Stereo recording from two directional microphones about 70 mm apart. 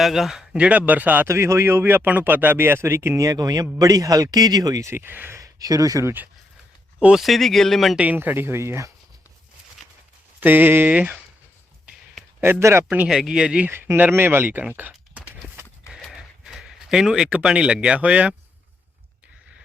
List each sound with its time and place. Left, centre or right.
0.0 s speech: centre
0.5 s speech: centre
1.3 s speech: right
3.3 s speech: right
4.8 s speech: right
5.4 s speech: right
7.2 s speech: centre
7.9 s speech: right
10.4 s speech: right
12.4 s speech: right
13.1 s speech: centre
13.7 s speech: right
14.7 s typing: right
16.1 s speech: centre